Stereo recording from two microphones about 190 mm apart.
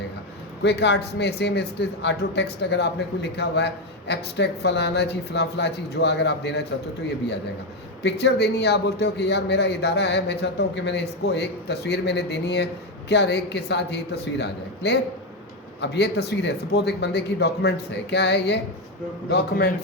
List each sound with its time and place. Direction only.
0.6 s a man's voice: 65° left (ahead or behind)
8.0 s a man's voice: 65° left (ahead or behind)